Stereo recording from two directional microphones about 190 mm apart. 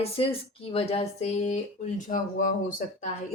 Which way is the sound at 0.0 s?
30° left (ahead or behind).